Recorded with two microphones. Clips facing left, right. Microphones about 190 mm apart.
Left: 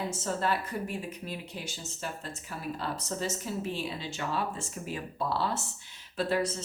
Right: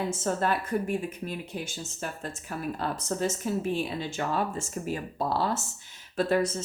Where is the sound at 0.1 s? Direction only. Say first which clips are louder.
Right 3 dB; 50° right (ahead or behind).